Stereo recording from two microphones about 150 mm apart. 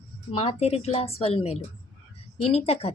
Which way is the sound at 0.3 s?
40° left (ahead or behind).